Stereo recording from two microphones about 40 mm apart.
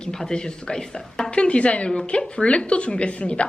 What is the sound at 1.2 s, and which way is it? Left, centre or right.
A woman's voice, left.